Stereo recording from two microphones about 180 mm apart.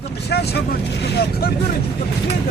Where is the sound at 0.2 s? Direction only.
65° left (ahead or behind).